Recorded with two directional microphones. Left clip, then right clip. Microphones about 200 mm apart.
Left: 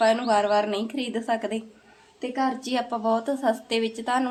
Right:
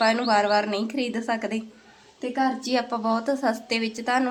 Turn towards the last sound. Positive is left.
turn(degrees=-15)  # may be behind; listen again after turning